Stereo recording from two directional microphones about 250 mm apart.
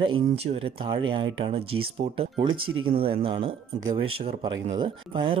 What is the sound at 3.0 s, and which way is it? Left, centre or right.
Speech, right.